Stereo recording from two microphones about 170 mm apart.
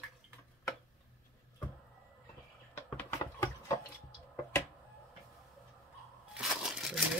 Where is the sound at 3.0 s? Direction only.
15° left (ahead or behind).